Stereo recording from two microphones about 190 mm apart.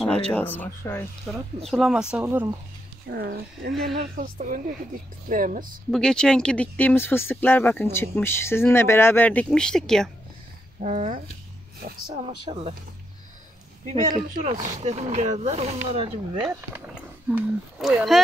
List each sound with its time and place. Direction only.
0.3 s speech: 10° left (ahead or behind)
1.3 s speech: centre (ahead or behind)
3.1 s speech: 55° right (ahead or behind)
5.9 s speech: 5° left (ahead or behind)
10.8 s speech: 40° right (ahead or behind)
12.4 s speech: 35° right (ahead or behind)
13.8 s speech: 35° right (ahead or behind)
17.3 s speech: 5° right (ahead or behind)